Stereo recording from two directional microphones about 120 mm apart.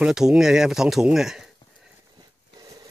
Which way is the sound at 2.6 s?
30° right (ahead or behind).